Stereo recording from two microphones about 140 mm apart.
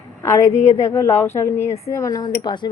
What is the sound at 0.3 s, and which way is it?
Speech, 20° left (ahead or behind).